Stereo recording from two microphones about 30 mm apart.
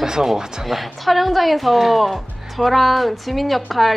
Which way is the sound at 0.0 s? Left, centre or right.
Centre.